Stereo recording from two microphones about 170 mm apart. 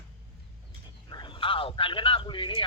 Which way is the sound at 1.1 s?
30° left (ahead or behind).